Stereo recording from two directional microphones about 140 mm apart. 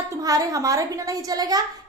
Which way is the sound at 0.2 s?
25° right (ahead or behind).